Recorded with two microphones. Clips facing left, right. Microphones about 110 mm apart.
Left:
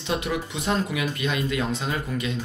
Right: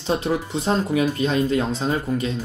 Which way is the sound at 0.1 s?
30° right (ahead or behind).